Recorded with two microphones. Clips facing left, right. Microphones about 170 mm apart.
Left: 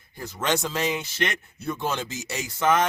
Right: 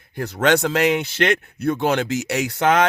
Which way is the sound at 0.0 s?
70° right (ahead or behind).